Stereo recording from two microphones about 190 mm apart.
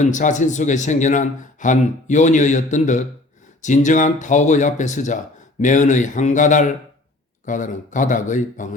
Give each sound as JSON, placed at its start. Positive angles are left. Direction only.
{"t": 0.0, "sound": "speech", "side_deg": 40}